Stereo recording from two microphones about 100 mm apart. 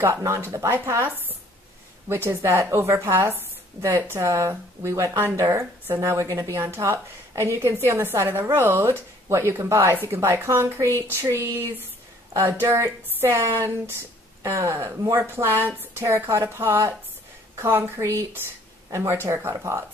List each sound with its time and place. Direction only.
0.0 s a woman's voice: 30° right (ahead or behind)